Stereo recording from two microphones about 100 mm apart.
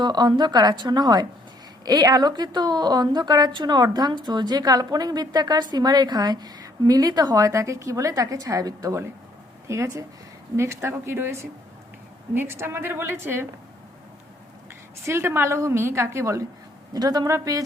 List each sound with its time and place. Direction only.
0.0 s a woman's voice: 45° right (ahead or behind); by 13.5 s 25° right (ahead or behind)
15.0 s a woman's voice: 25° right (ahead or behind)
16.9 s a woman's voice: 40° right (ahead or behind)